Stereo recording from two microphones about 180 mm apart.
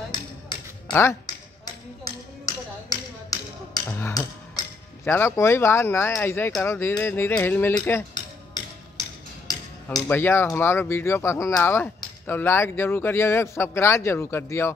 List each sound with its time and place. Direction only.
0.1 s a sound: 25° left (ahead or behind)
0.9 s speech: 15° left (ahead or behind)
2.0 s tap: 20° left (ahead or behind)
10.0 s speech: 10° left (ahead or behind)